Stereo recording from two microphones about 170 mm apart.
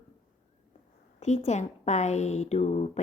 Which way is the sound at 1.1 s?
40° left (ahead or behind).